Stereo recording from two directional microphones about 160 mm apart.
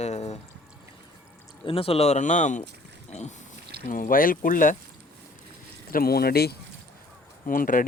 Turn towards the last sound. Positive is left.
turn(degrees=60)  # may be behind; listen again after turning